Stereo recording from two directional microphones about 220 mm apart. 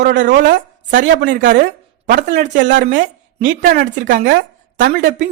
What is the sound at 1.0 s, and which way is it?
Speech, 55° right (ahead or behind).